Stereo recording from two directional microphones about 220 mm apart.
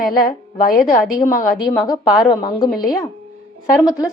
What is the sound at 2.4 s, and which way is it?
A woman's voice, 20° left (ahead or behind).